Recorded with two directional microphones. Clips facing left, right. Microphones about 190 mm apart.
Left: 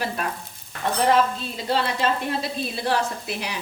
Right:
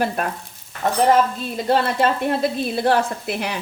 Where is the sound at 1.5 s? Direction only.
50° right (ahead or behind).